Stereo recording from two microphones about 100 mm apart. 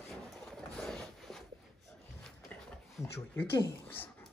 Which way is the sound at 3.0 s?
25° left (ahead or behind).